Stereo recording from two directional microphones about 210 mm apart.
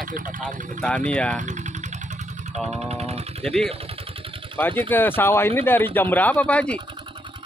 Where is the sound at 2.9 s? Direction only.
30° right (ahead or behind).